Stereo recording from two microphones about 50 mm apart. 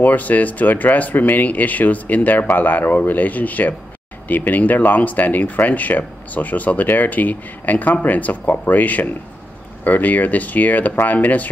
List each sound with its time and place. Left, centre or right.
0.0 s speech: left